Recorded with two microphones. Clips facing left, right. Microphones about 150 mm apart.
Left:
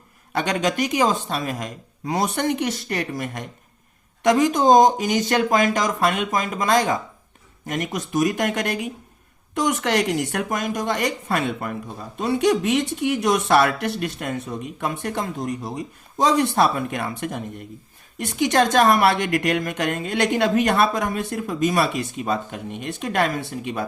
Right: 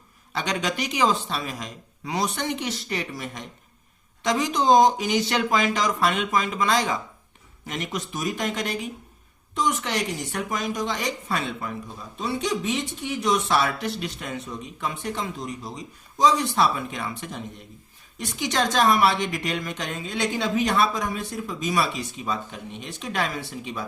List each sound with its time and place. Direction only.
0.3 s speech: 50° left (ahead or behind)